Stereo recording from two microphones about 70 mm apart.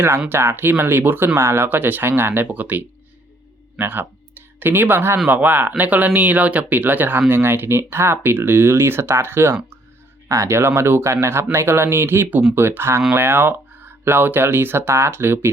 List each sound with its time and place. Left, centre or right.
0.3 s speech: right
5.3 s speech: right
10.2 s speech: right